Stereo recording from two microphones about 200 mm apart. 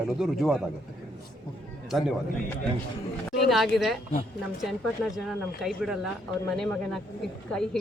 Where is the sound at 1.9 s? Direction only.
Centre (ahead or behind).